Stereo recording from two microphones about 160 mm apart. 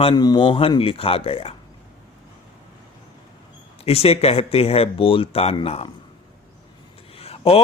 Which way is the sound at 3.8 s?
40° left (ahead or behind).